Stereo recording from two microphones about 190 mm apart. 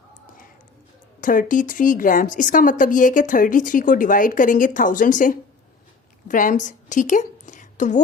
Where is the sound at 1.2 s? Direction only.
45° left (ahead or behind).